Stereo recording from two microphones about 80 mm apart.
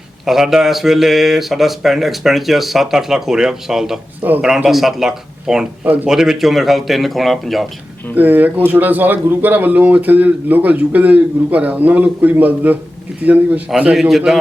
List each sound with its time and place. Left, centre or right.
0.3 s speech: centre
4.2 s speech: right
4.4 s speech: centre
8.1 s speech: right
13.9 s speech: centre